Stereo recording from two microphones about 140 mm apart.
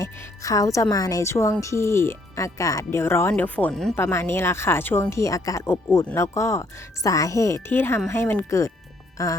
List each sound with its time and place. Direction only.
0.0 s speech: 25° left (ahead or behind); by 3.9 s 5° left (ahead or behind)
3.9 s speech: 20° left (ahead or behind)